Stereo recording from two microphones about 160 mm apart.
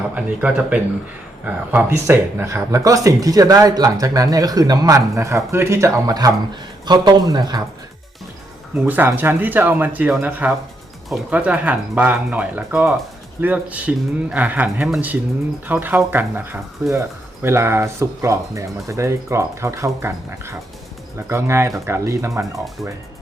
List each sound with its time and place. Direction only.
0.1 s speech: 10° right (ahead or behind); by 7.6 s 25° right (ahead or behind)
8.7 s speech: 10° right (ahead or behind)